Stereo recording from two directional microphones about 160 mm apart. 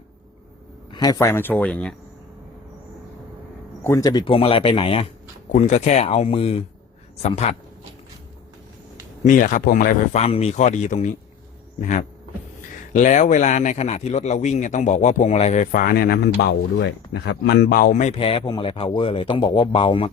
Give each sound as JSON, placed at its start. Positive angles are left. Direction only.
{"t": 0.9, "sound": "speech", "side_deg": 25}
{"t": 3.8, "sound": "speech", "side_deg": 20}
{"t": 4.3, "sound": "a man's voice", "side_deg": 35}
{"t": 5.5, "sound": "a man's voice", "side_deg": 50}
{"t": 9.2, "sound": "a man's voice", "side_deg": 55}
{"t": 16.8, "sound": "speech", "side_deg": 90}
{"t": 17.9, "sound": "a man's voice", "side_deg": 40}